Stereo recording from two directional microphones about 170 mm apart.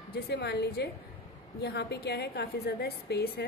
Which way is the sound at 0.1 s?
80° left.